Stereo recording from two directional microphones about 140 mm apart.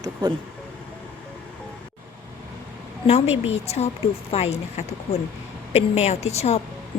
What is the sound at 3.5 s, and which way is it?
A woman's voice, 50° left (ahead or behind).